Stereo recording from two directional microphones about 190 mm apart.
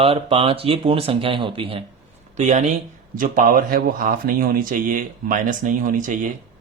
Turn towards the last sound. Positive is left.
turn(degrees=-45)  # may be behind; listen again after turning